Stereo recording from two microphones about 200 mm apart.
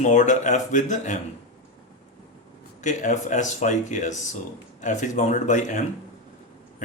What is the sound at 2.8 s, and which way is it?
Speech, 40° left (ahead or behind).